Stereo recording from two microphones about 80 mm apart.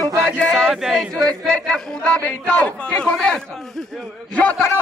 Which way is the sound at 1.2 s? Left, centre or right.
Centre.